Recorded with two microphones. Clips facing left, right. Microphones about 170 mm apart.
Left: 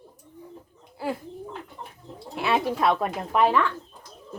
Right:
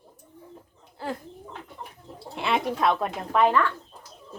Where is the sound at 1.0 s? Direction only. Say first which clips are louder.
Left 3 dB; 10° left (ahead or behind).